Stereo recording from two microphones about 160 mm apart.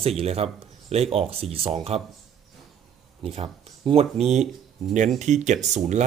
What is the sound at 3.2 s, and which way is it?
Speech, 40° right (ahead or behind).